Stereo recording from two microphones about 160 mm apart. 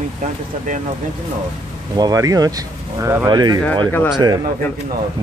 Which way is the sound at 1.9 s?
25° right (ahead or behind).